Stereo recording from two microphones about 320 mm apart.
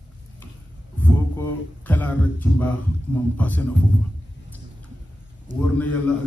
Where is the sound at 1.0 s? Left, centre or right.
Centre.